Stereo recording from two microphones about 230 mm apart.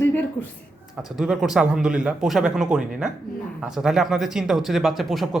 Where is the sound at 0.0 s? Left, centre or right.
Centre.